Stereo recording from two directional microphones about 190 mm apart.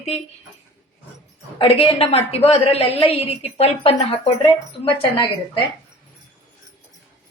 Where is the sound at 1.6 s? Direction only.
30° left (ahead or behind).